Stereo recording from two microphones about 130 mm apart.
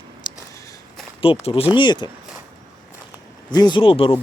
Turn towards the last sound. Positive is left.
turn(degrees=45)  # may be behind; listen again after turning